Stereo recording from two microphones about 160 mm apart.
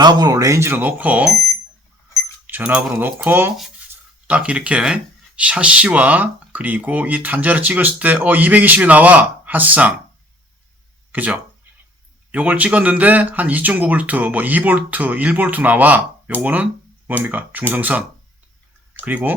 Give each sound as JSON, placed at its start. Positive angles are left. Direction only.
{"t": 0.0, "sound": "speech", "side_deg": -25}
{"t": 2.5, "sound": "speech", "side_deg": -10}
{"t": 11.1, "sound": "speech", "side_deg": -10}